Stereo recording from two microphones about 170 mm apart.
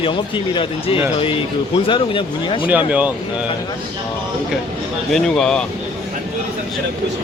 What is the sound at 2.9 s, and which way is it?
Speech, 10° right (ahead or behind).